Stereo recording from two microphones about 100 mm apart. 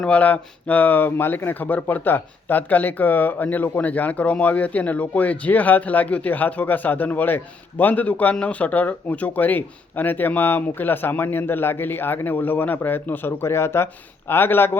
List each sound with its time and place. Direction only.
0.0 s speech: 15° left (ahead or behind)